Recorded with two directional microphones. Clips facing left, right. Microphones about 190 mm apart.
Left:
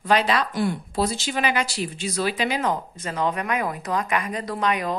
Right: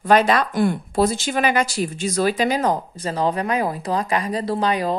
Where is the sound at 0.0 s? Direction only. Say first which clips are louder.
Right 5 dB; 50° right (ahead or behind).